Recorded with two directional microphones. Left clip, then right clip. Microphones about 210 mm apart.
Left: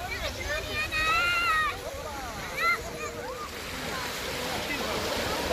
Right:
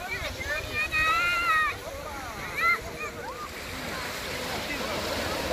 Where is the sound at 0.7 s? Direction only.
55° left (ahead or behind).